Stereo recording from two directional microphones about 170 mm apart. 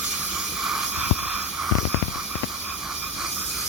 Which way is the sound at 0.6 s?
Centre (ahead or behind).